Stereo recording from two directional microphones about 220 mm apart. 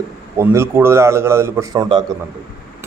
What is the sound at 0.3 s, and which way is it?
Speech, 10° right (ahead or behind).